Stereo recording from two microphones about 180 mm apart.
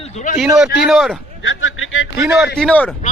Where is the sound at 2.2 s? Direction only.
10° right (ahead or behind).